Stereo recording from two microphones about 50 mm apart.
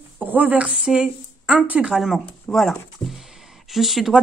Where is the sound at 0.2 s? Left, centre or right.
Right.